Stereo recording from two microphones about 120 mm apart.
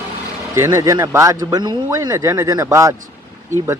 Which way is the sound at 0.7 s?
30° right (ahead or behind).